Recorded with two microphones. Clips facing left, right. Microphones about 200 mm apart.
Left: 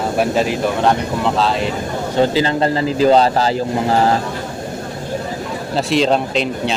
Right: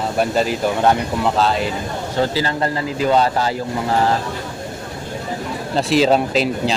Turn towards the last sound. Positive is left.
turn(degrees=-5)  # may be behind; listen again after turning